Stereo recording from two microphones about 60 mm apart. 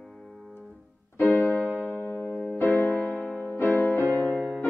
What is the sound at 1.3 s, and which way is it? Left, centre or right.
Music, left.